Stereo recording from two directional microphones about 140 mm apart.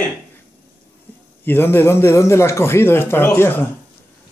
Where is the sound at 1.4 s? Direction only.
15° left (ahead or behind).